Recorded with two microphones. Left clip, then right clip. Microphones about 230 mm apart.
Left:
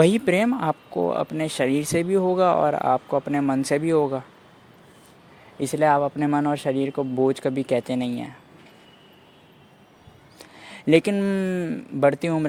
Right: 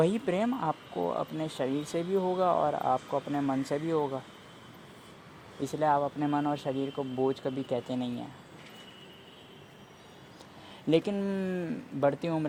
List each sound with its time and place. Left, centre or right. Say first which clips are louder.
0.0 s speech: left 9 dB; left
5.5 s speech: left 8 dB; left
10.3 s speech: left 10 dB; left